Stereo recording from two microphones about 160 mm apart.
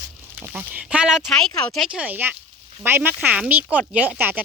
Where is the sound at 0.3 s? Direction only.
10° right (ahead or behind).